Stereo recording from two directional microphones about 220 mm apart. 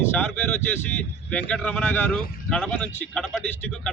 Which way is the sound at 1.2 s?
5° left (ahead or behind).